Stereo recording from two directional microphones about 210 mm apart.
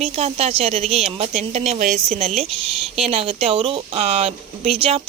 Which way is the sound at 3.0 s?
30° right (ahead or behind).